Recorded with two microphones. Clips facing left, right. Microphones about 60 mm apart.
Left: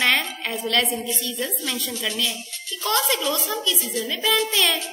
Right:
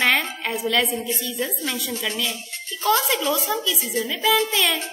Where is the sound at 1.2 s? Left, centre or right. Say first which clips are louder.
Right 1 dB; centre.